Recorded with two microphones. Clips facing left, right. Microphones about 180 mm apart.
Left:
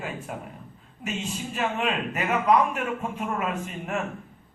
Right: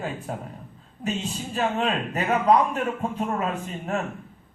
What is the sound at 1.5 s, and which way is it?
A man's voice, 35° right (ahead or behind).